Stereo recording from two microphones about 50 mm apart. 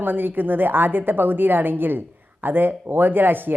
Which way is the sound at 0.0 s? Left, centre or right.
Right.